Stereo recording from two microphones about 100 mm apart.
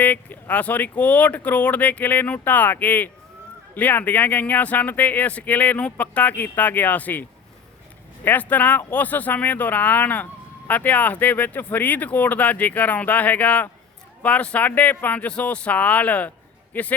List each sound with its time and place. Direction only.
0.0 s speech: 15° left (ahead or behind)